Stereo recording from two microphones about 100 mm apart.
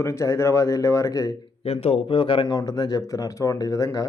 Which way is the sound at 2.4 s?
40° left (ahead or behind).